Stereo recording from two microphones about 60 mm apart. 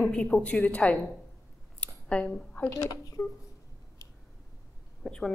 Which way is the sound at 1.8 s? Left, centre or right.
Left.